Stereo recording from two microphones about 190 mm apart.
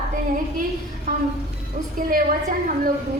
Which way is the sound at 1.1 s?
40° right (ahead or behind).